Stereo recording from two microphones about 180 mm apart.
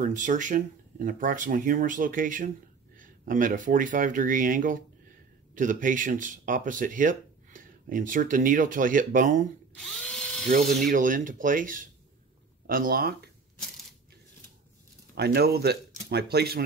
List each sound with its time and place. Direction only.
0.0 s speech: 45° right (ahead or behind)
10.0 s drill: 5° left (ahead or behind)
10.9 s speech: 50° right (ahead or behind)
15.1 s speech: 60° right (ahead or behind)